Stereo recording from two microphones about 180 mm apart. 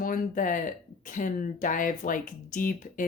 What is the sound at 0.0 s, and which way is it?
A woman's voice, 50° left (ahead or behind).